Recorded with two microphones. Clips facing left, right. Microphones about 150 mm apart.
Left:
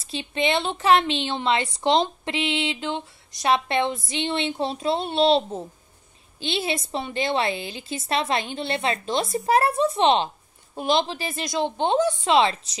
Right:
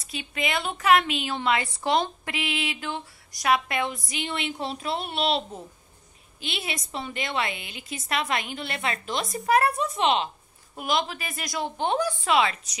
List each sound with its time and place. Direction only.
0.0 s a woman's voice: 30° left (ahead or behind)